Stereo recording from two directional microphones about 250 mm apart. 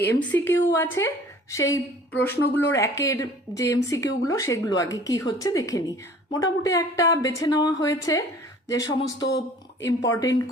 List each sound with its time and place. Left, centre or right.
0.3 s a woman's voice: centre